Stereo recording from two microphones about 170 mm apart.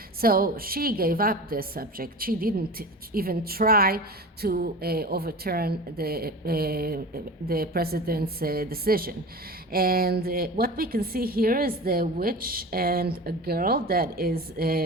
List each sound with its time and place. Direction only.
0.2 s a woman's voice: 60° right (ahead or behind)